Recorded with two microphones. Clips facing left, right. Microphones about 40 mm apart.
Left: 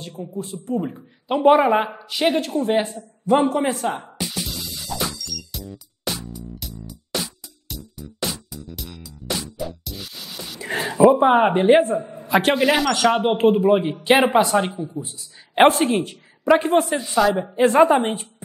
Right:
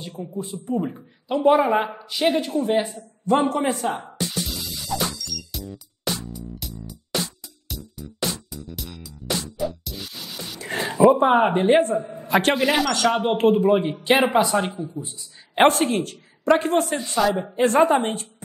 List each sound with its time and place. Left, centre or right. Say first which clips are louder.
0.2 s speech: left 1 dB; centre
1.3 s speech: left 3 dB; centre
6.2 s music: even; centre
10.6 s speech: left 2 dB; centre
12.2 s a man's voice: left 2 dB; centre
12.9 s speech: left 2 dB; centre